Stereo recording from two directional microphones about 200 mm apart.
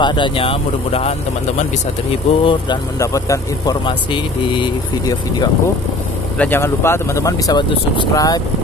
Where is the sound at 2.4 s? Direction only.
20° left (ahead or behind).